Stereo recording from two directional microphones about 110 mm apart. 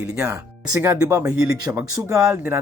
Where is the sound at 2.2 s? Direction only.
25° right (ahead or behind).